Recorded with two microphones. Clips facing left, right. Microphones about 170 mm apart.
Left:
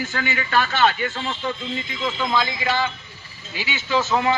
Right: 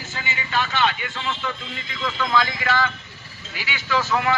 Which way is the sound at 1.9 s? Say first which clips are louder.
Right 1 dB; 20° left (ahead or behind).